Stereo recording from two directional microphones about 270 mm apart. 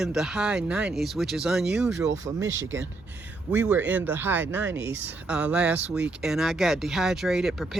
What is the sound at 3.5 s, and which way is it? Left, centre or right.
Speech, centre.